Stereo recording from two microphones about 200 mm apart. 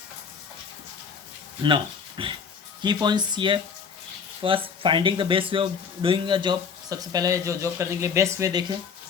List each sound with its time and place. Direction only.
1.6 s speech: 25° right (ahead or behind)